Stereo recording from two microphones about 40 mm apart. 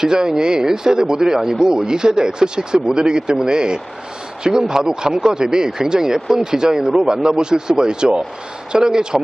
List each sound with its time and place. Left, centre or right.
0.0 s speech: centre